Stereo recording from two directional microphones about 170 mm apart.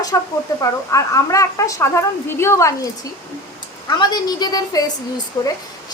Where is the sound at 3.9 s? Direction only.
25° left (ahead or behind).